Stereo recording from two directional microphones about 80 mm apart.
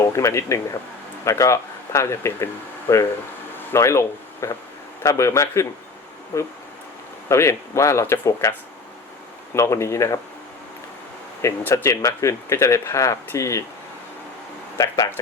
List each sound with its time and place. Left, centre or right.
0.0 s speech: left
9.6 s speech: left
11.7 s speech: left
14.8 s speech: left